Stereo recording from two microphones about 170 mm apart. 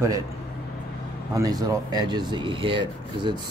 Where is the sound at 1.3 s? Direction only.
20° right (ahead or behind).